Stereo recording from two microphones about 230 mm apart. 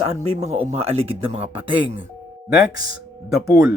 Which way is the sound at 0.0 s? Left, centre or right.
Right.